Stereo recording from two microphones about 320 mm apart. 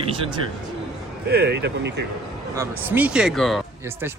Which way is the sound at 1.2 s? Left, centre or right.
Right.